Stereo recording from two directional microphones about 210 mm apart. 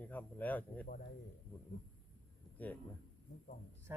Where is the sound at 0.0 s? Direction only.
10° left (ahead or behind).